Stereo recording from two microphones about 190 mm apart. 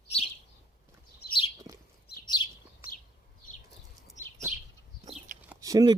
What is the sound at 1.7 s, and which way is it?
Bird, 20° right (ahead or behind).